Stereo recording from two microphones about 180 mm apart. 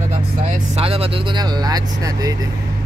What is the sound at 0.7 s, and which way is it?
Speech, 30° right (ahead or behind).